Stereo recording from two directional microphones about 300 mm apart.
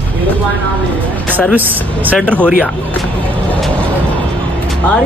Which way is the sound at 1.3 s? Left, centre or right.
Centre.